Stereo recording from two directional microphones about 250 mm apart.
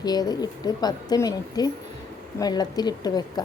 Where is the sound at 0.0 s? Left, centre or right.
Centre.